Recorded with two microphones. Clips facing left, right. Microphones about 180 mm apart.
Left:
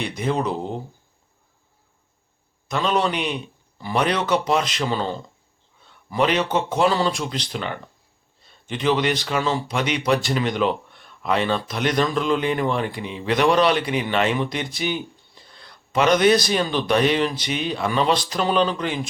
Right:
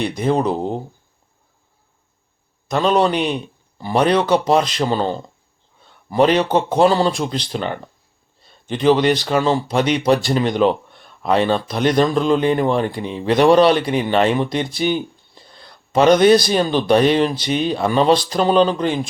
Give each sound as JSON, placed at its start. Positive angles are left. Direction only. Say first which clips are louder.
{"t": 0.0, "sound": "speech", "louder": "right 5 dB", "side_deg": -35}
{"t": 2.6, "sound": "speech", "louder": "right 6 dB", "side_deg": -40}